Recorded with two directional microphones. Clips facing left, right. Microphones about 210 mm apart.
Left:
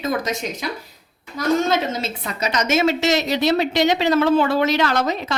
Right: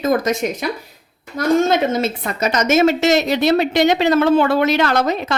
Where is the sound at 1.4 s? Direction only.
55° right (ahead or behind).